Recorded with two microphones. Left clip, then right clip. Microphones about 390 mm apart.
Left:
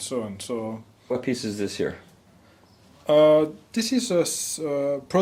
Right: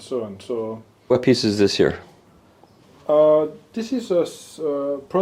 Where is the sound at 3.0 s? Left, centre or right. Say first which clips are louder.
Right 1 dB; left.